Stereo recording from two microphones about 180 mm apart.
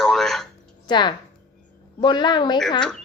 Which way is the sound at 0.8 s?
25° left (ahead or behind).